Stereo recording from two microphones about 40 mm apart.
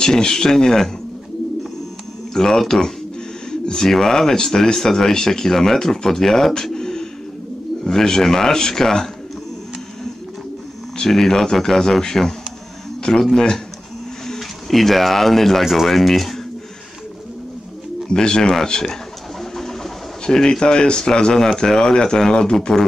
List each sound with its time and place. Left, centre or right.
0.0 s speech: centre
2.3 s speech: centre
3.9 s speech: centre
6.5 s bird: centre
7.8 s speech: centre
11.0 s speech: centre
13.2 s speech: centre
15.6 s speech: centre
18.0 s speech: centre